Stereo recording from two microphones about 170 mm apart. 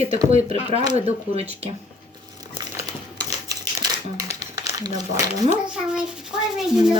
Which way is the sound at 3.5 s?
20° right (ahead or behind).